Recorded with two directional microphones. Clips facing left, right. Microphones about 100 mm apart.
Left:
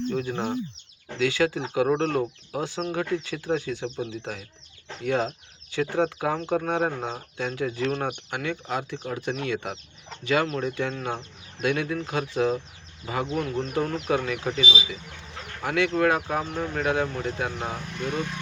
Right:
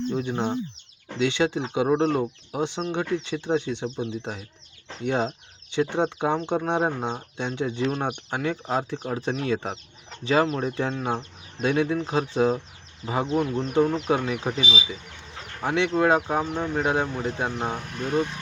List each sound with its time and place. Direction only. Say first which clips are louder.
0.1 s speech: right 1 dB; 20° right (ahead or behind)
15.6 s speech: right 1 dB; 25° right (ahead or behind)